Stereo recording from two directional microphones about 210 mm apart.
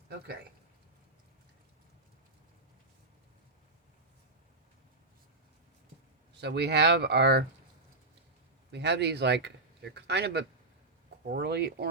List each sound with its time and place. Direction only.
6.3 s speech: 55° right (ahead or behind)
8.7 s speech: 55° right (ahead or behind)